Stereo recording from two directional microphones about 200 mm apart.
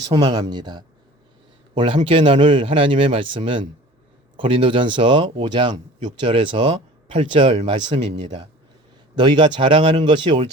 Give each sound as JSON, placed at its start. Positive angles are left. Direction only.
{"t": 0.1, "sound": "a man's voice", "side_deg": -25}